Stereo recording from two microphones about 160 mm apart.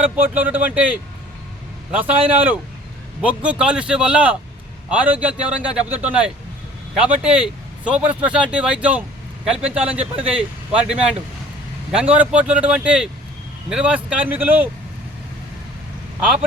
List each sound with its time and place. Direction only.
0.0 s speech: 10° right (ahead or behind)